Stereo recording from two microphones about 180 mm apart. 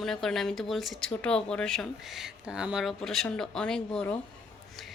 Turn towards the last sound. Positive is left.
turn(degrees=5)  # may be behind; listen again after turning